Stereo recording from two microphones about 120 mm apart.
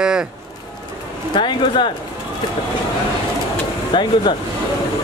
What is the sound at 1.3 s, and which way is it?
Speech, 40° left (ahead or behind).